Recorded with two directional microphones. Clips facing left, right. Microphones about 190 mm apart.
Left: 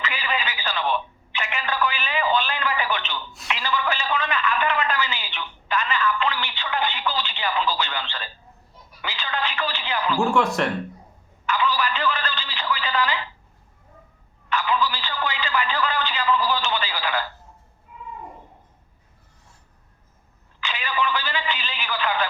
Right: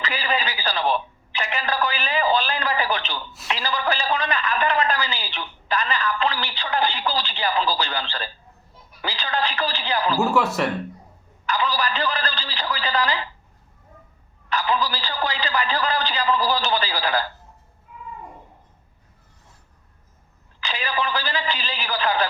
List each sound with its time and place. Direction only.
0.0 s telephone: 35° right (ahead or behind)
3.5 s a sound: 35° right (ahead or behind)
10.3 s speech: 5° right (ahead or behind)
11.4 s telephone: 35° right (ahead or behind)
14.5 s a sound: 35° right (ahead or behind)
20.6 s telephone: 35° right (ahead or behind)